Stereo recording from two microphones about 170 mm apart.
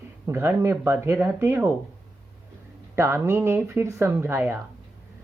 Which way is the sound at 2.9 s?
15° right (ahead or behind).